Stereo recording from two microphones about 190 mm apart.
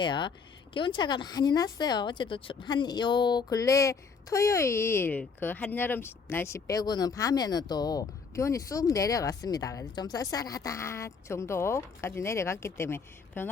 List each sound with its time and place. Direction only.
0.0 s a woman's voice: 25° left (ahead or behind)